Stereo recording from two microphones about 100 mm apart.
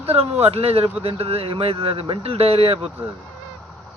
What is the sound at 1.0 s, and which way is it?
Speech, 75° right (ahead or behind).